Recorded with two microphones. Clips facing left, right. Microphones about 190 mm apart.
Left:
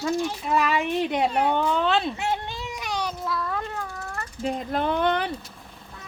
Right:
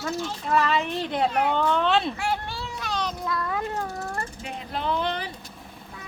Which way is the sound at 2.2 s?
20° left (ahead or behind).